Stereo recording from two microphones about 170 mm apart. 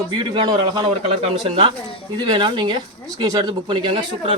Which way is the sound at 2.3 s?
30° right (ahead or behind).